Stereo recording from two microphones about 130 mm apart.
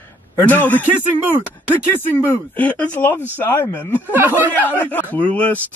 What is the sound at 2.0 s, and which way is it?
Speech, 15° left (ahead or behind).